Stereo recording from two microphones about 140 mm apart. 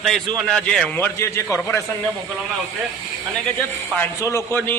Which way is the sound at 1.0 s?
20° left (ahead or behind).